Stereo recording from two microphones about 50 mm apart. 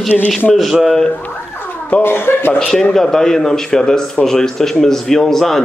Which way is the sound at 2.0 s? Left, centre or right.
Left.